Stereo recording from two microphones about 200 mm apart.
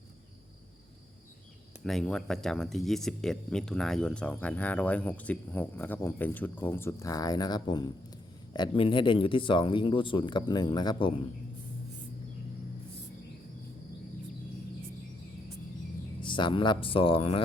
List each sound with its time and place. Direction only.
1.8 s speech: centre (ahead or behind); by 11.1 s 20° left (ahead or behind)
16.2 s speech: 25° left (ahead or behind)